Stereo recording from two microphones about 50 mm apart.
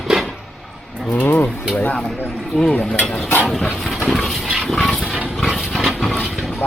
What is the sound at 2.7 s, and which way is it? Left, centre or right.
Speech, left.